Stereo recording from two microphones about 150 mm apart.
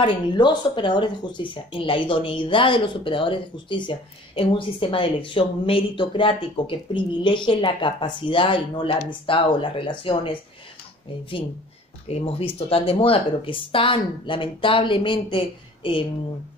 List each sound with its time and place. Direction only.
0.0 s speech: 30° left (ahead or behind)
12.1 s speech: 40° left (ahead or behind)